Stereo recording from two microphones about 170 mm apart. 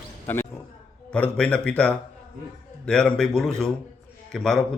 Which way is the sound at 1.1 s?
5° left (ahead or behind).